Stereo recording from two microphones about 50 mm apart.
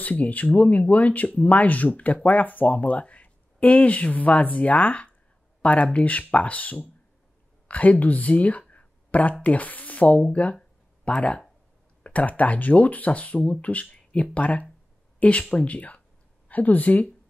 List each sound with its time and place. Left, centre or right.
0.0 s speech: left